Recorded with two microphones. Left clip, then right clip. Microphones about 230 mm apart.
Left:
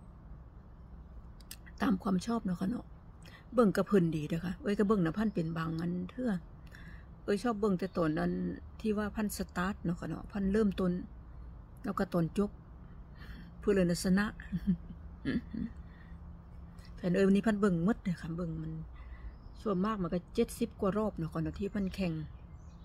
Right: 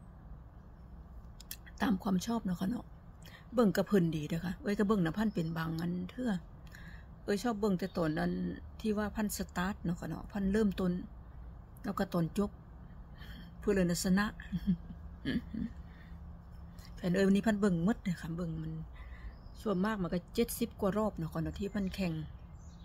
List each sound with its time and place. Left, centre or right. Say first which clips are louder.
1.5 s speech: left 1 dB; centre
17.0 s speech: left 1 dB; centre